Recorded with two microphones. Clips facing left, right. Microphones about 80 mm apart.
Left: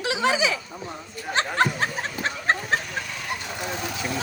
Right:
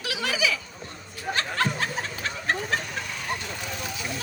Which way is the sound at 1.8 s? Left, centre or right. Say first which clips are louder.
Left 3 dB; left.